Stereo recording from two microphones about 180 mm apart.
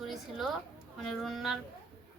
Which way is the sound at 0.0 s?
Centre (ahead or behind).